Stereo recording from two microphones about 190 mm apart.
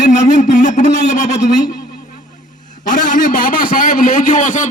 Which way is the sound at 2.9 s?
45° left (ahead or behind).